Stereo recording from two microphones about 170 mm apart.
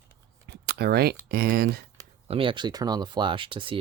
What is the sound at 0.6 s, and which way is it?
Speech, 70° right (ahead or behind).